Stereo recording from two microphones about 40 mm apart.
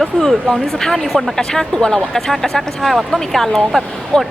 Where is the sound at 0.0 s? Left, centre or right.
Centre.